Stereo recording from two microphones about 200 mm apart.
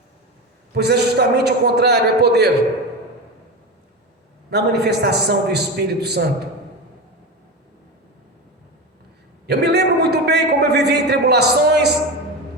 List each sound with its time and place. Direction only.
0.7 s a man's voice: 55° right (ahead or behind)
4.5 s a man's voice: 55° right (ahead or behind)
9.5 s a man's voice: 55° right (ahead or behind)